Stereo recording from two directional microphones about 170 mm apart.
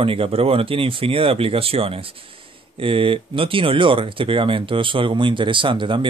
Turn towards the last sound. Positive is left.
turn(degrees=-30)  # may be behind; listen again after turning